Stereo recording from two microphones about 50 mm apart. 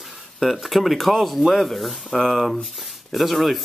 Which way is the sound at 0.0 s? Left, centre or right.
Centre.